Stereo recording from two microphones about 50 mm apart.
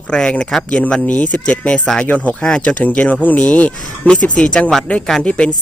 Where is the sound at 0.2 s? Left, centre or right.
Centre.